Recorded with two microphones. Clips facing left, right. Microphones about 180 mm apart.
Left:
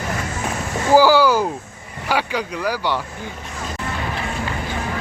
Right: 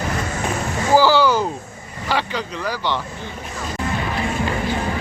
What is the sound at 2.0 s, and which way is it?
Speech, 10° left (ahead or behind).